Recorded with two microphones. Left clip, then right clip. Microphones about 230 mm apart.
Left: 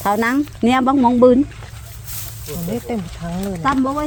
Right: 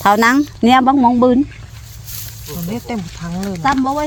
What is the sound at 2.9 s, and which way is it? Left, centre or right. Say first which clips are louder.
Speech: right 1 dB; right.